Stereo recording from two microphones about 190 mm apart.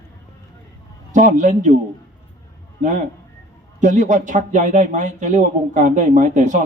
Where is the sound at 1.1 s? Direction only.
40° right (ahead or behind).